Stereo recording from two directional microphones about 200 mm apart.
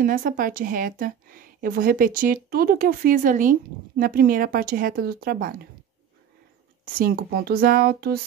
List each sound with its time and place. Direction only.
0.0 s a woman's voice: 40° right (ahead or behind)
6.9 s a woman's voice: 50° right (ahead or behind)